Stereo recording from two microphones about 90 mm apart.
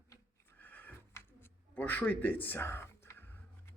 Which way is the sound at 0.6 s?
20° left (ahead or behind).